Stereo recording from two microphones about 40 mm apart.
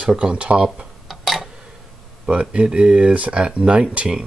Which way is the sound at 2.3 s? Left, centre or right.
Right.